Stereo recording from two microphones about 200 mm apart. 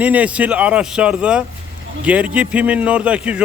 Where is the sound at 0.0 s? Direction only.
5° right (ahead or behind).